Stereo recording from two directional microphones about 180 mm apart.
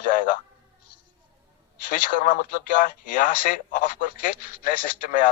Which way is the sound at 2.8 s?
50° left (ahead or behind).